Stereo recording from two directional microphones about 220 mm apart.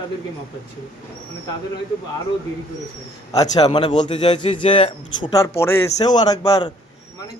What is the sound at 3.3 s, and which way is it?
A man's voice, 15° left (ahead or behind).